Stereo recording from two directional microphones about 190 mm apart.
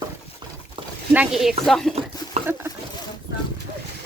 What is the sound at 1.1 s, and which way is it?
Speech, 5° right (ahead or behind).